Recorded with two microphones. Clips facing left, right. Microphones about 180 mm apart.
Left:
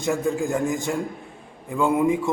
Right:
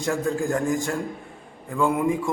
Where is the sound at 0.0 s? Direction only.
20° left (ahead or behind).